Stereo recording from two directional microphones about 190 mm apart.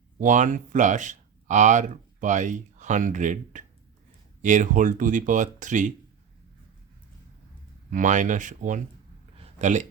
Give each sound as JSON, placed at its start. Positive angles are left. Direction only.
{"t": 0.2, "sound": "speech", "side_deg": -40}
{"t": 7.9, "sound": "speech", "side_deg": -40}
{"t": 9.4, "sound": "a sound", "side_deg": -40}